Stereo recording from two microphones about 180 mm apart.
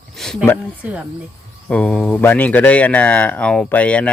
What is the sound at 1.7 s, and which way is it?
Speech, 5° left (ahead or behind).